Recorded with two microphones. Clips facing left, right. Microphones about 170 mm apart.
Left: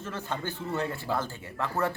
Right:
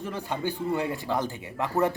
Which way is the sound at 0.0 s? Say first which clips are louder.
Right 4 dB; 15° right (ahead or behind).